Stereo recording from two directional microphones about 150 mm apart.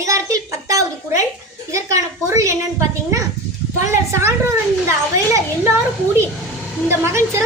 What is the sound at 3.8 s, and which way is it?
A woman's voice, 20° right (ahead or behind).